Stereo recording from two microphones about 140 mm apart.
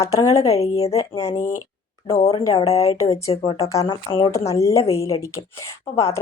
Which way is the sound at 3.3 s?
45° left (ahead or behind).